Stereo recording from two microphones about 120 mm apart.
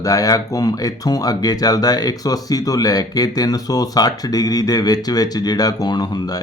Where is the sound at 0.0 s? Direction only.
30° left (ahead or behind).